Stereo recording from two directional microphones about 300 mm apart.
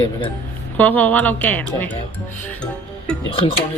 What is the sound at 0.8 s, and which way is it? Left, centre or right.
A woman's voice, centre.